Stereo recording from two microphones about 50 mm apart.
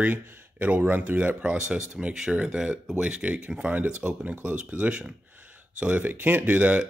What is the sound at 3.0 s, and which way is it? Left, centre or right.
Speech, right.